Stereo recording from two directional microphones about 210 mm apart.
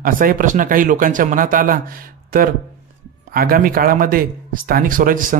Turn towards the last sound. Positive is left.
turn(degrees=-40)  # may be behind; listen again after turning